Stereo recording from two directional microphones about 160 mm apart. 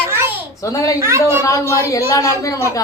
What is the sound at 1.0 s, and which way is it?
Speech, 15° right (ahead or behind).